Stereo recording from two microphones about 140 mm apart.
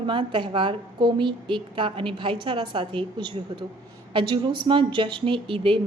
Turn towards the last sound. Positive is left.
turn(degrees=-40)  # may be behind; listen again after turning